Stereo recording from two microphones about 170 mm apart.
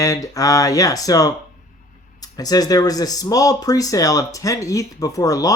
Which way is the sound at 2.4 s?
20° left (ahead or behind).